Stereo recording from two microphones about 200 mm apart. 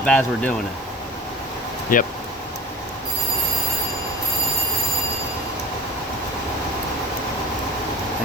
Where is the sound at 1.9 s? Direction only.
40° left (ahead or behind).